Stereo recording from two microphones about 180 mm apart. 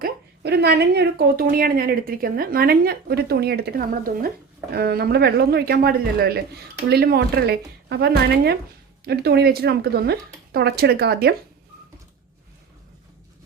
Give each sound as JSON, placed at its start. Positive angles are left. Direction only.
{"t": 0.0, "sound": "a woman's voice", "side_deg": -65}